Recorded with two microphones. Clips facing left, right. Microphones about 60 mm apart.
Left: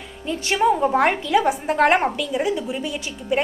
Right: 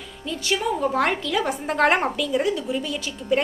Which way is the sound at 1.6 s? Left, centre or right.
Centre.